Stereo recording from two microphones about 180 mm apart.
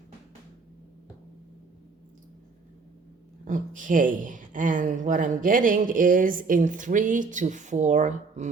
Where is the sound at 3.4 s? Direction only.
45° right (ahead or behind).